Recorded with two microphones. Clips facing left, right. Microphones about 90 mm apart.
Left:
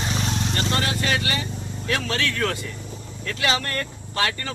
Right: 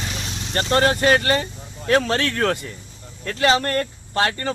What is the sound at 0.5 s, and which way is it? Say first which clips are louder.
Speech: right 11 dB; 45° right (ahead or behind).